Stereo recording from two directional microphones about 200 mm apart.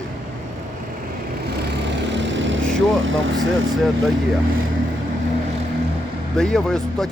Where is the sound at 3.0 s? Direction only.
70° right (ahead or behind).